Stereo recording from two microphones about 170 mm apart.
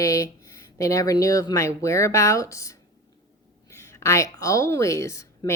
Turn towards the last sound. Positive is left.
turn(degrees=15)  # may be behind; listen again after turning